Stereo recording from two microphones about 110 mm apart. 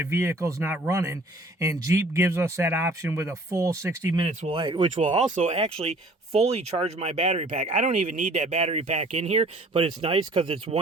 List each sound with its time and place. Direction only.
0.0 s speech: 25° right (ahead or behind)
4.5 s speech: 45° right (ahead or behind)
5.1 s speech: 65° right (ahead or behind)